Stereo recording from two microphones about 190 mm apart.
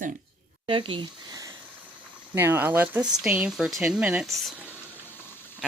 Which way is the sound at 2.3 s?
10° right (ahead or behind).